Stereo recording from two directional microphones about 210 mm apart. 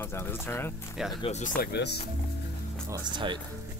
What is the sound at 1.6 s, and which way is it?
Speech, 50° left (ahead or behind).